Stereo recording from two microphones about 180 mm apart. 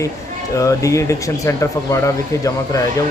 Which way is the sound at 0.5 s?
15° left (ahead or behind).